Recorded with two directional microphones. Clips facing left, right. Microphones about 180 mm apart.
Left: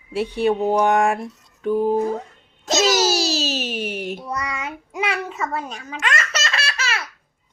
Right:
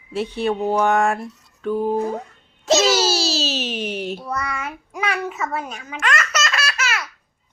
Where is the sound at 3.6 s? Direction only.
50° left (ahead or behind).